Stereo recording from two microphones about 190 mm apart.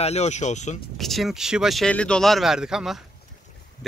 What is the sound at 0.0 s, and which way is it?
Speech, 35° left (ahead or behind).